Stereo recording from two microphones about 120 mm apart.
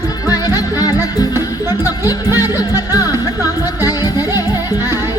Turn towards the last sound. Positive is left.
turn(degrees=30)  # may be behind; listen again after turning